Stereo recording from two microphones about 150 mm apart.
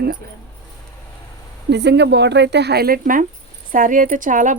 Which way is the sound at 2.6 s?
90° right.